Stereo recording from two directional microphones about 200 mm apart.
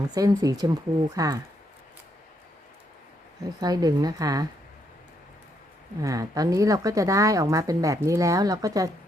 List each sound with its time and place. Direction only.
0.1 s speech: 20° right (ahead or behind)
3.6 s speech: 20° right (ahead or behind)
6.0 s a woman's voice: 15° right (ahead or behind)